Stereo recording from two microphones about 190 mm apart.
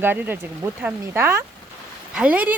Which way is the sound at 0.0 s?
10° right (ahead or behind).